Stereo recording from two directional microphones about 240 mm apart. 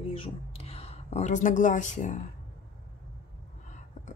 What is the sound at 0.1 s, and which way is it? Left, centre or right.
Speech, left.